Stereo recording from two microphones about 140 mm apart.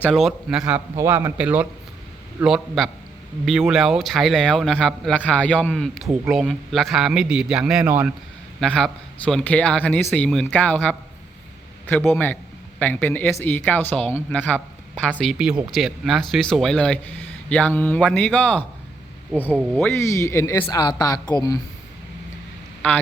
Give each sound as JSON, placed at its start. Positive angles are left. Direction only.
{"t": 0.0, "sound": "a man's voice", "side_deg": 0}
{"t": 0.9, "sound": "a man's voice", "side_deg": -20}
{"t": 2.4, "sound": "a man's voice", "side_deg": 0}
{"t": 8.6, "sound": "a man's voice", "side_deg": 5}
{"t": 19.3, "sound": "a man's voice", "side_deg": -5}
{"t": 19.7, "sound": "speech", "side_deg": 15}